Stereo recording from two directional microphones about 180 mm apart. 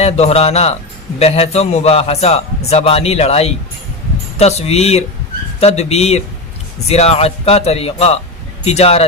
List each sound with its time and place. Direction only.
0.0 s speech: 35° left (ahead or behind)